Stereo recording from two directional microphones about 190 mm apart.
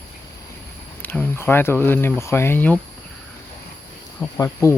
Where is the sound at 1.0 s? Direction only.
10° left (ahead or behind).